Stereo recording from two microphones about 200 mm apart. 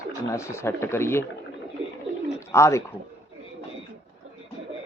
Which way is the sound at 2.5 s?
15° left (ahead or behind).